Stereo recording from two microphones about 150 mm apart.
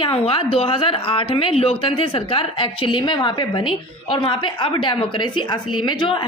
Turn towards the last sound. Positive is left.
turn(degrees=35)  # may be behind; listen again after turning